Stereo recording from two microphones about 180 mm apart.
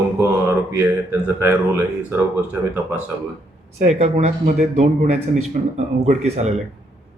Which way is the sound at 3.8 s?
40° right (ahead or behind).